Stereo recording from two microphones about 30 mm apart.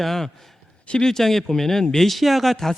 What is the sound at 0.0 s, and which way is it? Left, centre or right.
A man's voice, centre.